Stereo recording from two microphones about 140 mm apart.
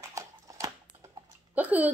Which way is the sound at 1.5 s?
10° right (ahead or behind).